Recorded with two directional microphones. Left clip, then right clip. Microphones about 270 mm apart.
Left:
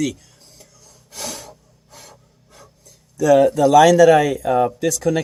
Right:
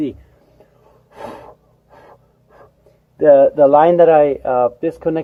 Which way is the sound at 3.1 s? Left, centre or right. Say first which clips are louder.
Right 5 dB; left.